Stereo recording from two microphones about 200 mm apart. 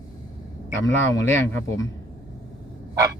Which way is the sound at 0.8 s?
10° left (ahead or behind).